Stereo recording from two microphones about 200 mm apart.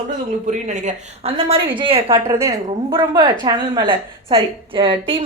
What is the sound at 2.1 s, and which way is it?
A woman's voice, 15° right (ahead or behind).